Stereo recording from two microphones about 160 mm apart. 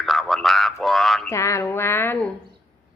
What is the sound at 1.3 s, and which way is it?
Speech, 20° left (ahead or behind).